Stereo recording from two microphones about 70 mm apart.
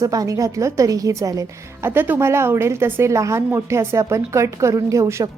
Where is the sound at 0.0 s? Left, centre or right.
Right.